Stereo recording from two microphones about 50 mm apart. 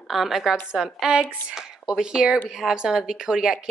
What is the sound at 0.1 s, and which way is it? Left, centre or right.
A woman's voice, centre.